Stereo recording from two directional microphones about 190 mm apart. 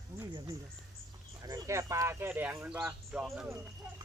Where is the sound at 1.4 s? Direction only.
20° right (ahead or behind).